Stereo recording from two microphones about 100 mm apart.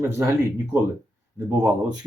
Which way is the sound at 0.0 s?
30° right (ahead or behind).